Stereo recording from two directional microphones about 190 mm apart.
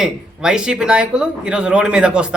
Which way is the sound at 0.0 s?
5° right (ahead or behind).